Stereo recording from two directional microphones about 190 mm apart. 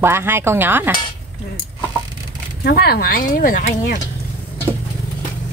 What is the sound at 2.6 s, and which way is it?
Speech, 55° left (ahead or behind).